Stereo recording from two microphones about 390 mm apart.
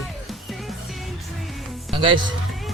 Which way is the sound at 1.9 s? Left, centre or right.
Centre.